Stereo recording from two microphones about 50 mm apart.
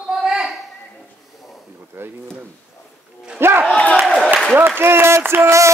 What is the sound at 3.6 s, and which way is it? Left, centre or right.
Speech, left.